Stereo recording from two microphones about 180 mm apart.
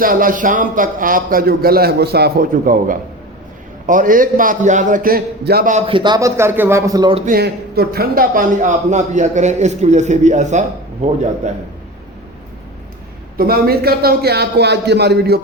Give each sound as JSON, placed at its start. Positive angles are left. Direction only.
{"t": 0.0, "sound": "a man's voice", "side_deg": -50}
{"t": 5.9, "sound": "a man's voice", "side_deg": -25}
{"t": 7.3, "sound": "a man's voice", "side_deg": -60}
{"t": 13.3, "sound": "a man's voice", "side_deg": -55}